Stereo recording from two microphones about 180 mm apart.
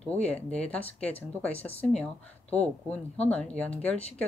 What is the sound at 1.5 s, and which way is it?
Speech, 35° left (ahead or behind).